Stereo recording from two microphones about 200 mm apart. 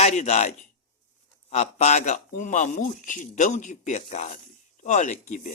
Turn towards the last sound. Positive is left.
turn(degrees=35)  # may be behind; listen again after turning